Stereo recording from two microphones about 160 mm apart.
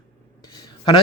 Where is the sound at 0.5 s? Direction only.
30° left (ahead or behind).